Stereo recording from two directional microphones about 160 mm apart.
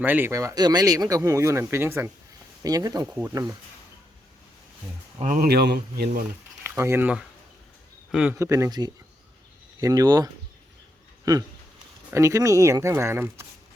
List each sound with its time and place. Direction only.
0.0 s speech: 10° right (ahead or behind)
5.4 s speech: 80° right
6.7 s speech: 15° right (ahead or behind)
8.4 s speech: 20° right (ahead or behind)
12.1 s speech: 20° right (ahead or behind)